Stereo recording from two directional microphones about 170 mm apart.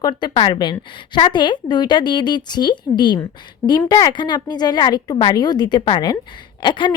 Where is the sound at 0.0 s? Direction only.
30° left (ahead or behind).